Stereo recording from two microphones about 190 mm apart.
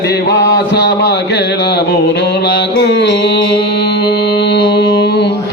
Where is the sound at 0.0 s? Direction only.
60° left (ahead or behind).